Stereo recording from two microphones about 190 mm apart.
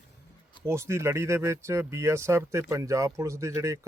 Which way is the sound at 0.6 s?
15° right (ahead or behind).